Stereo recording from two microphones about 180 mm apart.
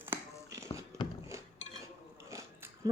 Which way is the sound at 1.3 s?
15° right (ahead or behind).